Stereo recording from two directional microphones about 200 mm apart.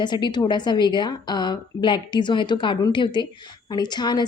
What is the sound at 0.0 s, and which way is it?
A woman's voice, 20° left (ahead or behind).